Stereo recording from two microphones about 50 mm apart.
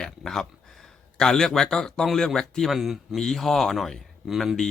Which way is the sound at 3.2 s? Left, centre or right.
Centre.